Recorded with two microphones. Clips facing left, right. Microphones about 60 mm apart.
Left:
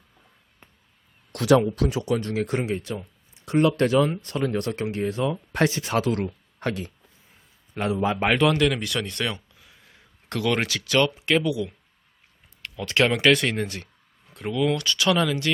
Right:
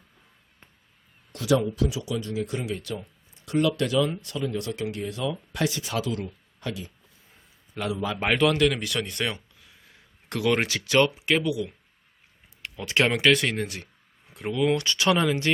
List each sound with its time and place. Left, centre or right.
1.3 s speech: left
2.6 s speech: left
7.8 s speech: left
8.3 s speech: centre
9.6 s a sound: centre
10.2 s speech: centre
13.2 s speech: centre
14.3 s speech: centre
14.8 s speech: right